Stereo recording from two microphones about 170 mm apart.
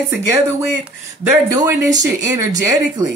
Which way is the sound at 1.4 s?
20° right (ahead or behind).